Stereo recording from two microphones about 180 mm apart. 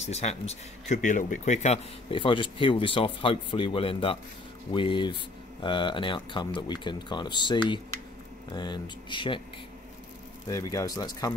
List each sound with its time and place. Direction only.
0.0 s speech: 35° left (ahead or behind)
10.5 s speech: 20° left (ahead or behind)